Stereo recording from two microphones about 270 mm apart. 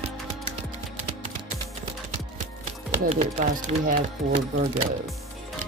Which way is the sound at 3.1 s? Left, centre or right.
Right.